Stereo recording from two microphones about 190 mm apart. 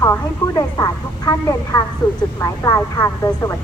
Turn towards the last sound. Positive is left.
turn(degrees=15)  # may be behind; listen again after turning